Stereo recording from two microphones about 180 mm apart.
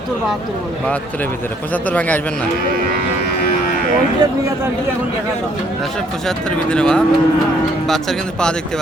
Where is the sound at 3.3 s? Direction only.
60° left (ahead or behind).